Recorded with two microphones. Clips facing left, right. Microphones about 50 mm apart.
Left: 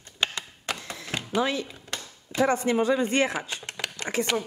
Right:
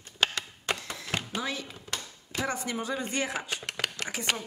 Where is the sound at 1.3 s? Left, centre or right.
Left.